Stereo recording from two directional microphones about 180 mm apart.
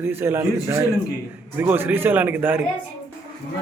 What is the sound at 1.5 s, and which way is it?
A man's voice, 10° right (ahead or behind).